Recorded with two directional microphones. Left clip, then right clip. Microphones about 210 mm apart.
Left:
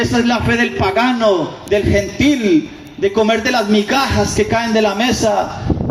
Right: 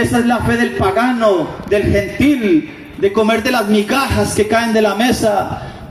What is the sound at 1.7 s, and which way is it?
Speech, 30° right (ahead or behind).